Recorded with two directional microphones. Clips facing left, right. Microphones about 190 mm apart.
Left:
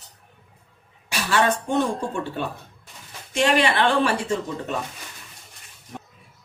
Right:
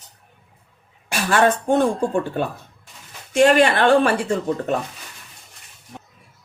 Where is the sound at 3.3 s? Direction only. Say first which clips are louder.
Right 5 dB; 50° right (ahead or behind).